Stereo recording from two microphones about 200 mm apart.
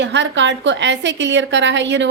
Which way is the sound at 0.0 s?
65° right (ahead or behind).